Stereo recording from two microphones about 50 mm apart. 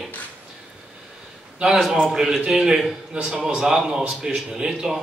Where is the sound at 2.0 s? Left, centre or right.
Centre.